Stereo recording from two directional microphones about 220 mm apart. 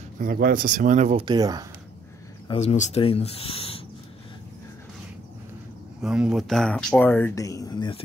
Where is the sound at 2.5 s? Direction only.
30° left (ahead or behind).